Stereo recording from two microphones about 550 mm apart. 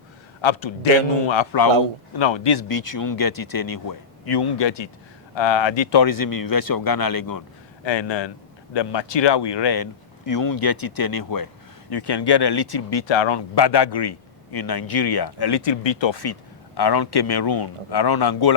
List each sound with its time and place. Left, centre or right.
0.4 s a man's voice: left
7.9 s speech: left